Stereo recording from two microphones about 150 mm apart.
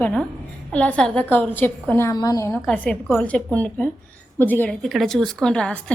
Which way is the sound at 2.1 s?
25° left (ahead or behind).